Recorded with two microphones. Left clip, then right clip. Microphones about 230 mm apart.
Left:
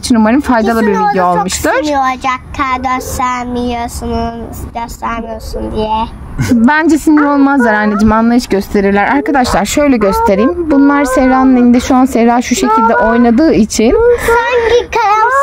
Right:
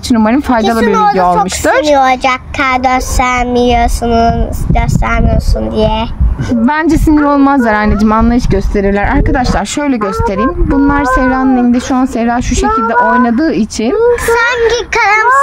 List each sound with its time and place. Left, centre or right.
0.1 s speech: centre
2.0 s speech: right
6.6 s speech: centre
9.3 s speech: centre
14.3 s speech: centre